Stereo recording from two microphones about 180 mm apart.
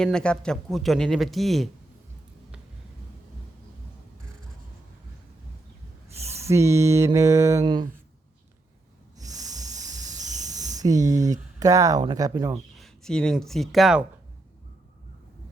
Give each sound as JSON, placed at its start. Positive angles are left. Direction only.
{"t": 0.0, "sound": "speech", "side_deg": 5}
{"t": 6.3, "sound": "a sound", "side_deg": -15}
{"t": 9.1, "sound": "a sound", "side_deg": -20}
{"t": 10.1, "sound": "cricket", "side_deg": -40}
{"t": 10.5, "sound": "speech", "side_deg": -20}
{"t": 12.8, "sound": "speech", "side_deg": 5}